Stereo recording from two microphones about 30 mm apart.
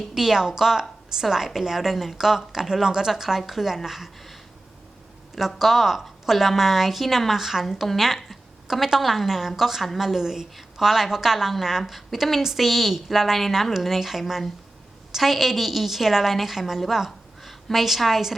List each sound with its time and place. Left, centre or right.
0.2 s a woman's voice: centre
5.3 s a woman's voice: centre
10.2 s a woman's voice: centre